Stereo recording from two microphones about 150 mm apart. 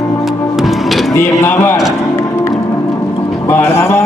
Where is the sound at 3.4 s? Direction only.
15° left (ahead or behind).